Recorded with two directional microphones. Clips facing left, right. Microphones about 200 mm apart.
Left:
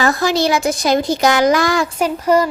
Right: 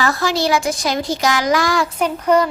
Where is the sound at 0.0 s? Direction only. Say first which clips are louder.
Left 3 dB; 20° left (ahead or behind).